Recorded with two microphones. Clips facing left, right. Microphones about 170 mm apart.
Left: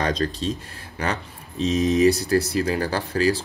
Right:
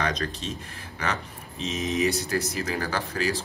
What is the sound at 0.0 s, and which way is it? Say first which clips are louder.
A man's voice: left 5 dB; 35° left (ahead or behind).